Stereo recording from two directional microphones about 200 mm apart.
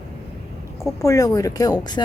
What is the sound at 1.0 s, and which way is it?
Speech, 15° left (ahead or behind).